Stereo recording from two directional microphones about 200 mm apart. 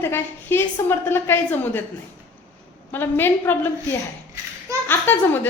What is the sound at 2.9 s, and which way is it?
Speech, 10° left (ahead or behind).